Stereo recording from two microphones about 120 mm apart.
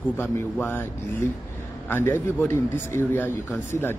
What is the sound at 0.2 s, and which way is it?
Speech, 20° left (ahead or behind).